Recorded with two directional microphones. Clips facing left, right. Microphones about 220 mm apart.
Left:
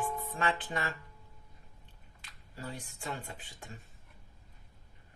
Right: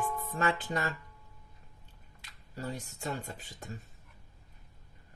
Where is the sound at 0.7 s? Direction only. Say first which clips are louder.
Right 3 dB; 40° right (ahead or behind).